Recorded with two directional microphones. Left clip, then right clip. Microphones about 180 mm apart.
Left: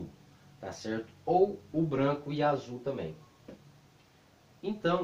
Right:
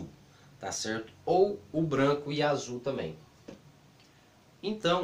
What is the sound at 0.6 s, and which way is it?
Speech, 10° right (ahead or behind).